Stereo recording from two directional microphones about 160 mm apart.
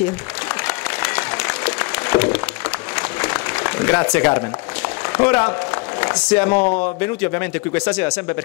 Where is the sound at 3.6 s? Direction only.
15° left (ahead or behind).